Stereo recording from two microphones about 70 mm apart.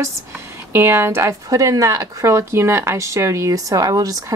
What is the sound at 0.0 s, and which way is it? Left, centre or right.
Speech, right.